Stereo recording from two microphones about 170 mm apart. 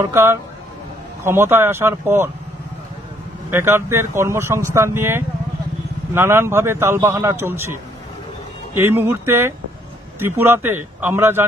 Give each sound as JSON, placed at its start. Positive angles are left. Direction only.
{"t": 0.0, "sound": "speech", "side_deg": -15}
{"t": 3.4, "sound": "speech", "side_deg": -15}